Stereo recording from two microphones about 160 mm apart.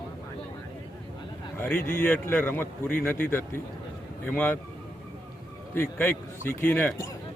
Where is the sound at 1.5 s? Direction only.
10° left (ahead or behind).